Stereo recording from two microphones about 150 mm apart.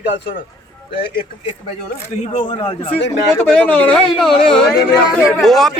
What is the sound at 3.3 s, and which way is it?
Speech, 10° left (ahead or behind).